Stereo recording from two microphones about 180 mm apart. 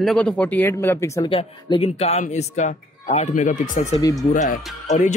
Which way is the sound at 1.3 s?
30° left (ahead or behind).